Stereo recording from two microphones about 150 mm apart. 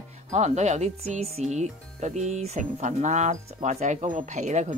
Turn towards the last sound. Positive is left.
turn(degrees=-50)  # may be behind; listen again after turning